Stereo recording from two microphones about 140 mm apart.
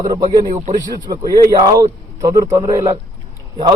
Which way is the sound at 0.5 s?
65° right (ahead or behind).